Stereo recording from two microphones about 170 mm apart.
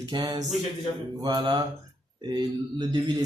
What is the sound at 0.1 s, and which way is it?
A man's voice, 25° right (ahead or behind).